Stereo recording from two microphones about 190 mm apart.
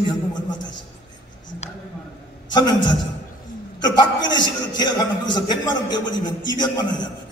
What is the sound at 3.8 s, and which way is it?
A man's voice, 20° left (ahead or behind).